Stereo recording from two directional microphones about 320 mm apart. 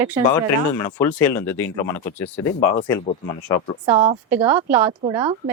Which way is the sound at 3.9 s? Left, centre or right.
Centre.